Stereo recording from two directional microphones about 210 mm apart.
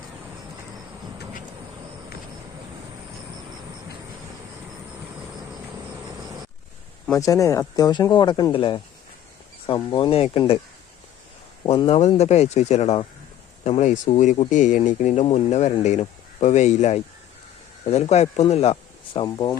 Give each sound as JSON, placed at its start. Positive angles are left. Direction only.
{"t": 7.2, "sound": "speech", "side_deg": 15}
{"t": 11.6, "sound": "speech", "side_deg": 25}